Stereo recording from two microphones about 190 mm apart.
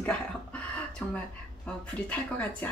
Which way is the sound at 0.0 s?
5° left (ahead or behind).